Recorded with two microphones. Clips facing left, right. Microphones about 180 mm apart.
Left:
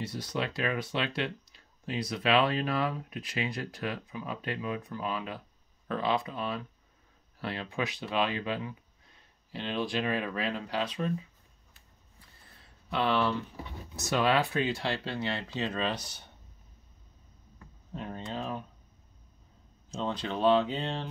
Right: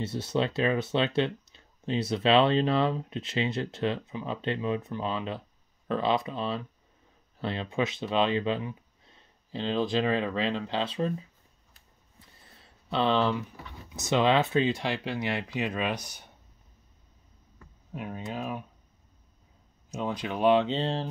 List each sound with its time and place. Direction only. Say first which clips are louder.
0.0 s speech: right 5 dB; 25° right (ahead or behind)
12.9 s speech: right 3 dB; 20° right (ahead or behind)
17.9 s speech: right 2 dB; 10° right (ahead or behind)
19.9 s speech: right 1 dB; 10° right (ahead or behind); by 21.1 s 35° right (ahead or behind)